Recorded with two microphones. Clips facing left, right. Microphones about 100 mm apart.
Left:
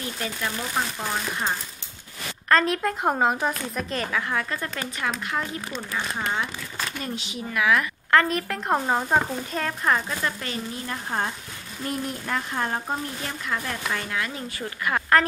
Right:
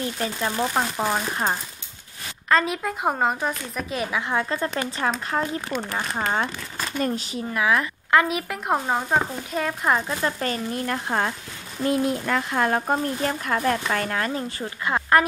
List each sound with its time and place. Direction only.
0.2 s speech: 30° right (ahead or behind)
0.9 s speech: 45° right (ahead or behind)
2.5 s speech: 5° right (ahead or behind)
3.9 s speech: 10° right (ahead or behind)
4.3 s speech: 25° right (ahead or behind); by 7.6 s 40° right (ahead or behind)
7.6 s speech: 25° right (ahead or behind)
8.1 s speech: 10° right (ahead or behind)
10.4 s speech: 40° right (ahead or behind)
10.9 s speech: 85° right
13.2 s speech: 45° right (ahead or behind)
14.6 s a woman's voice: 20° right (ahead or behind)